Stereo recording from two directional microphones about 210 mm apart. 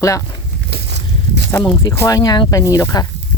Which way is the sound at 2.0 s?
15° left (ahead or behind).